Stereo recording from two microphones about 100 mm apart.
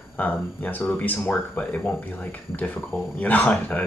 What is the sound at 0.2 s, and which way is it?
Speech, 15° left (ahead or behind).